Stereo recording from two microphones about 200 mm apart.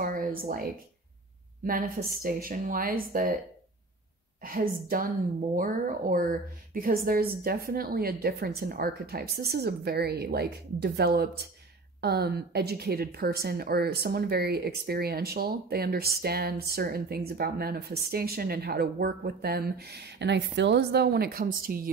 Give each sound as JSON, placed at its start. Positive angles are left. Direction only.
{"t": 0.0, "sound": "a sound", "side_deg": -45}
{"t": 1.6, "sound": "a woman's voice", "side_deg": -45}
{"t": 4.4, "sound": "a woman's voice", "side_deg": -45}